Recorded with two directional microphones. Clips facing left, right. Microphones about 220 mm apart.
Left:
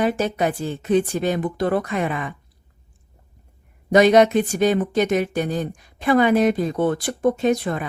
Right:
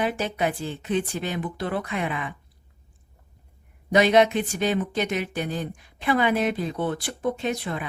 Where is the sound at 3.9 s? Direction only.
45° left (ahead or behind).